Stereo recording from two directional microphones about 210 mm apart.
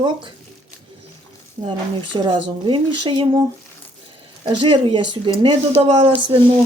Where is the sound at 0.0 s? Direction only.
25° right (ahead or behind).